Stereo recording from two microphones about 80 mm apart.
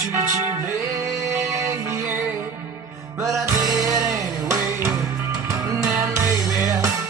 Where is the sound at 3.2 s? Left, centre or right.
Right.